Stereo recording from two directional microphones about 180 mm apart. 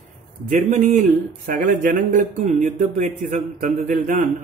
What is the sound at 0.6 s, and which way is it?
A man's voice, 45° right (ahead or behind).